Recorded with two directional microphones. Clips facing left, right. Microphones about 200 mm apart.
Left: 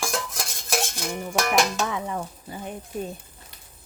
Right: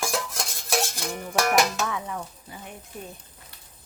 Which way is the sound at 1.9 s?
30° left (ahead or behind).